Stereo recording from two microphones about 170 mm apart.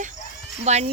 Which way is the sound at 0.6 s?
40° right (ahead or behind).